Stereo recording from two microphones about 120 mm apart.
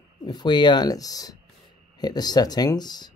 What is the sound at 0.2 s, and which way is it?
Speech, 35° left (ahead or behind).